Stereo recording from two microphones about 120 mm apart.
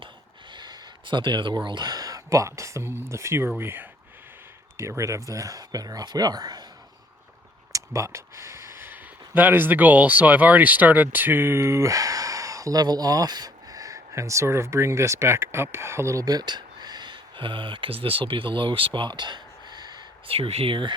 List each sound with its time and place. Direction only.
0.5 s speech: 35° right (ahead or behind)
7.7 s speech: 25° right (ahead or behind)
20.3 s speech: 55° right (ahead or behind)